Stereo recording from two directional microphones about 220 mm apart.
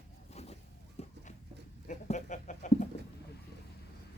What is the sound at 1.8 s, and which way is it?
Chicken, 35° left (ahead or behind).